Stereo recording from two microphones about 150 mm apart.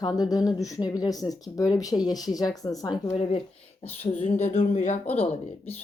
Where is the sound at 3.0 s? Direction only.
45° left (ahead or behind).